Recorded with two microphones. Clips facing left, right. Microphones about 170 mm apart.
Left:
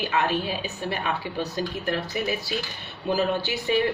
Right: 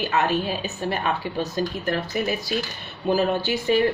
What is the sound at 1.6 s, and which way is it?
Speech, 40° right (ahead or behind).